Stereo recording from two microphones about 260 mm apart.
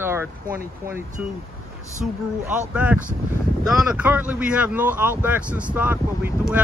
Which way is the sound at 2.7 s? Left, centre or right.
Centre.